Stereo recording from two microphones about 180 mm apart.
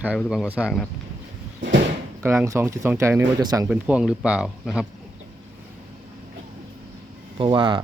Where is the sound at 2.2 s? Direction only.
15° right (ahead or behind).